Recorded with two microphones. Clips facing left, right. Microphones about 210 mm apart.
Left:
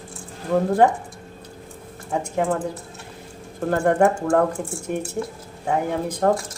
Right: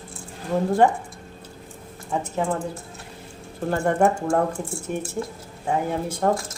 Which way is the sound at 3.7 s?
55° left (ahead or behind).